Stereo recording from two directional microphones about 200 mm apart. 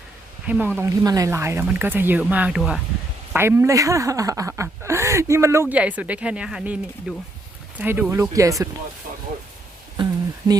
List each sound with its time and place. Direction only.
0.4 s speech: 5° right (ahead or behind)
10.4 s speech: 25° right (ahead or behind)